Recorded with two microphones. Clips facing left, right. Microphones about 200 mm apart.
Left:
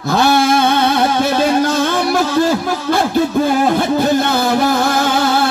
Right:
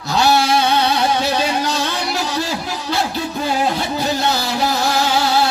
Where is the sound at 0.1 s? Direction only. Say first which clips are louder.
Left 3 dB; 50° left (ahead or behind).